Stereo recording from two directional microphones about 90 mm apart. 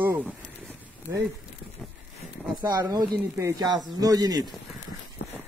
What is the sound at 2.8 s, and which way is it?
Speech, 40° right (ahead or behind).